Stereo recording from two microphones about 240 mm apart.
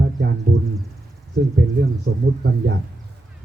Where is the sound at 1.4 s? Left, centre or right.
Right.